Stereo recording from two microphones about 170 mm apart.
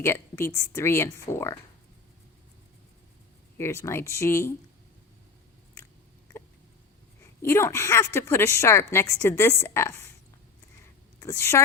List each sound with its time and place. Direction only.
0.0 s a woman's voice: 15° left (ahead or behind)
3.6 s a woman's voice: 15° left (ahead or behind)
7.4 s a woman's voice: 15° left (ahead or behind)
11.2 s a woman's voice: 15° left (ahead or behind)